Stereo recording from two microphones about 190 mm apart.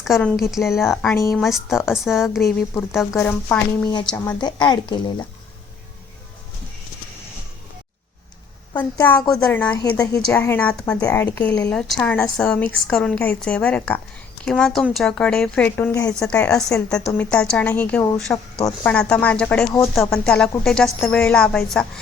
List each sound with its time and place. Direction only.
0.0 s a woman's voice: centre (ahead or behind)
4.3 s a woman's voice: 20° left (ahead or behind)
9.0 s a woman's voice: 10° left (ahead or behind)